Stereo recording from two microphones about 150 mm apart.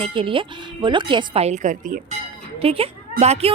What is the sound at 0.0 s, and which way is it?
Speech, 35° right (ahead or behind).